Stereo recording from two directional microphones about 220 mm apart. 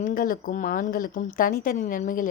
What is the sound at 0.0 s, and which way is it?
A woman's voice, 40° left (ahead or behind).